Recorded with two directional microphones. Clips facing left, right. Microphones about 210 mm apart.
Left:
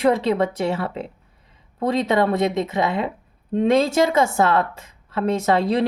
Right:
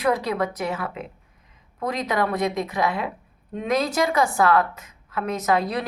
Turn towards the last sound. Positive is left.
turn(degrees=25)  # may be behind; listen again after turning